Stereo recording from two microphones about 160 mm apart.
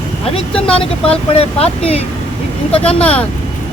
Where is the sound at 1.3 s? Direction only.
40° left (ahead or behind).